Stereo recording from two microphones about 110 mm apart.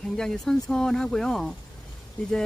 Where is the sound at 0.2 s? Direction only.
5° left (ahead or behind).